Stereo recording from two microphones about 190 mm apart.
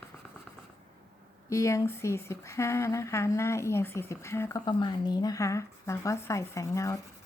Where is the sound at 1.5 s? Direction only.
15° left (ahead or behind).